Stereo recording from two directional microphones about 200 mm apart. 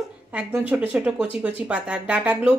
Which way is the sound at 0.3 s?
5° right (ahead or behind).